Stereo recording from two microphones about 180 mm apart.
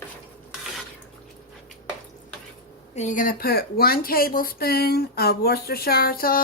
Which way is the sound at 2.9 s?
40° left (ahead or behind).